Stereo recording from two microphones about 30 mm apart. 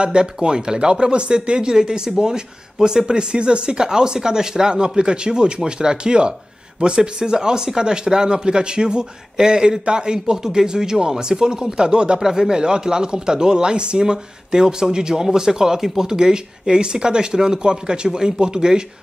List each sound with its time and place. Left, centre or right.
0.0 s speech: right
12.2 s speech: centre